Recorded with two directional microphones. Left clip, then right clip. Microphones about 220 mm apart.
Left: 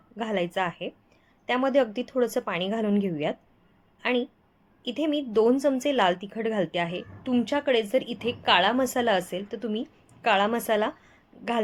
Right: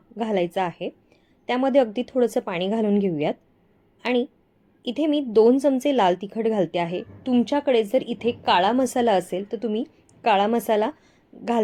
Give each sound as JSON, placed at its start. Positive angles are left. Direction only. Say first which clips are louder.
{"t": 0.2, "sound": "a woman's voice", "louder": "right 4 dB", "side_deg": -15}